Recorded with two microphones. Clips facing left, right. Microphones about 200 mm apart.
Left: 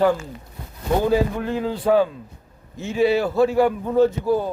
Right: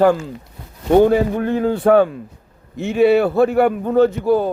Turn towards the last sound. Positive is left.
turn(degrees=-70)  # may be behind; listen again after turning